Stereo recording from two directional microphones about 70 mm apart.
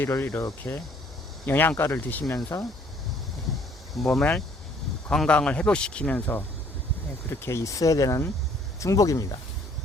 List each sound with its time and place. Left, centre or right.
0.0 s cricket: left
1.5 s speech: left
2.2 s speech: left
4.0 s speech: centre
7.3 s speech: left